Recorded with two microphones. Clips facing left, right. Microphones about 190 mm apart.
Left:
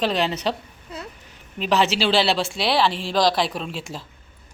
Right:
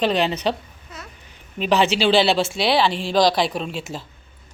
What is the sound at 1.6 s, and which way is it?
Speech, centre (ahead or behind).